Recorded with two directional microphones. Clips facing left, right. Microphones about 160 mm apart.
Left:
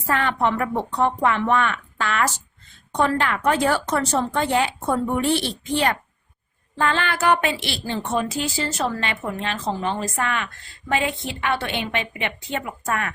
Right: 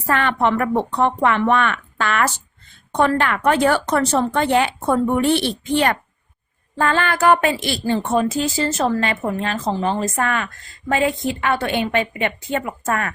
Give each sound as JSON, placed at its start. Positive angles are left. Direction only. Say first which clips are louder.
{"t": 0.1, "sound": "speech", "louder": "right 3 dB", "side_deg": -70}
{"t": 6.7, "sound": "a woman's voice", "louder": "right 3 dB", "side_deg": -45}